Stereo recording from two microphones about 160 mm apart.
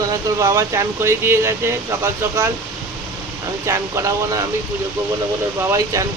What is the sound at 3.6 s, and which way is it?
Speech, 20° right (ahead or behind).